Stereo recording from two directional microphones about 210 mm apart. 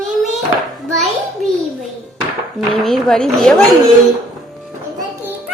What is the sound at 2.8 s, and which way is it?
Speech, centre (ahead or behind).